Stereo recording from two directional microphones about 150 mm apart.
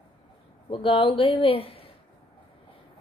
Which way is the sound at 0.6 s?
35° left (ahead or behind).